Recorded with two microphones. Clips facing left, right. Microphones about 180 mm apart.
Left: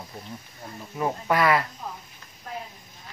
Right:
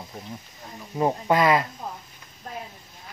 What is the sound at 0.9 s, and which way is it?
Speech, 25° right (ahead or behind).